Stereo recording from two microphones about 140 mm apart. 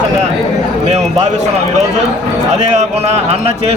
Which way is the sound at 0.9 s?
55° right (ahead or behind).